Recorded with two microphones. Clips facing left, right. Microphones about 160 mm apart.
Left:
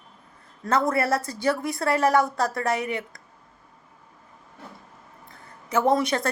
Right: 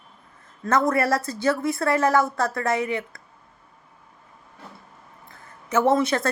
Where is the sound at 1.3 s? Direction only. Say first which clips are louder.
Right 2 dB; 10° left (ahead or behind).